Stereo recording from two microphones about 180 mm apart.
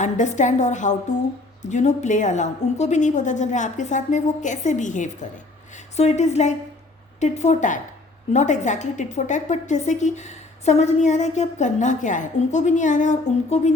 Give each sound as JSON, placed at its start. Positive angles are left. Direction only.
{"t": 0.0, "sound": "a woman's voice", "side_deg": 40}